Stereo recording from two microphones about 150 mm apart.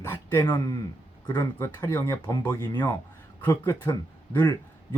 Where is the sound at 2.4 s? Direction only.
15° left (ahead or behind).